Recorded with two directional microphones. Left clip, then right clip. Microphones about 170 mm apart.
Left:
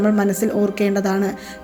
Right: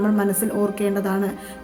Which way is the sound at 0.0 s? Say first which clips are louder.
Left 3 dB; 15° left (ahead or behind).